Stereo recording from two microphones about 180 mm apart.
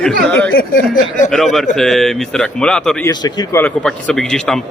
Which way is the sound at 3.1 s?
25° left (ahead or behind).